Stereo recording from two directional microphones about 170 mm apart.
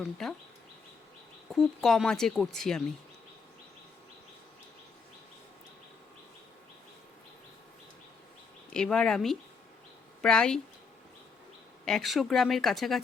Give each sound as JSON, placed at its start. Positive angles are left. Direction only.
{"t": 0.0, "sound": "speech", "side_deg": 0}
{"t": 1.5, "sound": "speech", "side_deg": 0}
{"t": 8.7, "sound": "speech", "side_deg": 5}
{"t": 11.9, "sound": "speech", "side_deg": 0}